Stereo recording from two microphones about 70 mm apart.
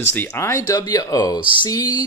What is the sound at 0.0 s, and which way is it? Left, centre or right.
Speech, left.